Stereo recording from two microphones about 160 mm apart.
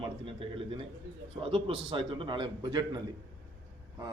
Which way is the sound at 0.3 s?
35° right (ahead or behind).